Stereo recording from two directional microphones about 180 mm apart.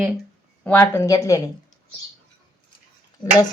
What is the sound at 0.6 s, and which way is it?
Speech, 10° left (ahead or behind).